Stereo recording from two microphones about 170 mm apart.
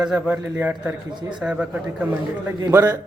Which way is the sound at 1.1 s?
25° right (ahead or behind).